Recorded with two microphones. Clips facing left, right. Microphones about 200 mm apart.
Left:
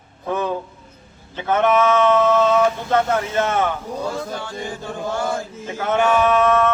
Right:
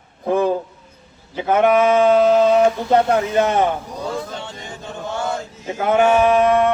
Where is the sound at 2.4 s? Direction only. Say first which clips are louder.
Right 3 dB; 35° right (ahead or behind).